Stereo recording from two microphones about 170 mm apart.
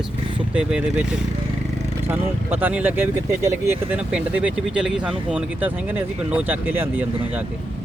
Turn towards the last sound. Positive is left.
turn(degrees=-10)  # may be behind; listen again after turning